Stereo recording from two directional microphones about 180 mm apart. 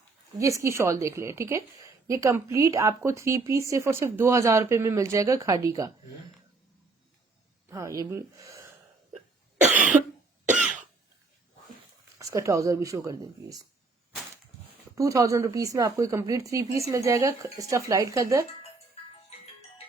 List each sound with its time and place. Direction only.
0.3 s a woman's voice: 15° right (ahead or behind)
7.7 s speech: 15° right (ahead or behind)
9.6 s cough: 45° right (ahead or behind)
12.2 s a woman's voice: 15° right (ahead or behind)
14.9 s a woman's voice: 15° right (ahead or behind)